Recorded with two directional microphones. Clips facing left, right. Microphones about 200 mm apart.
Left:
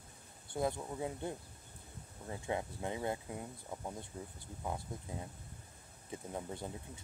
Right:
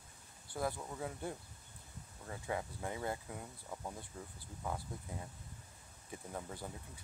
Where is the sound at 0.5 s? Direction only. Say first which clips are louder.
Left 3 dB; 20° left (ahead or behind).